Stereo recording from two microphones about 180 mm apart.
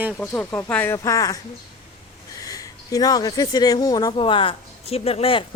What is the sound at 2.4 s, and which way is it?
Speech, 20° left (ahead or behind).